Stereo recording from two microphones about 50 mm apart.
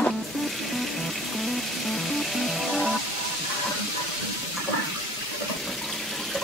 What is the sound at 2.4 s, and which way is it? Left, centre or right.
Music, centre.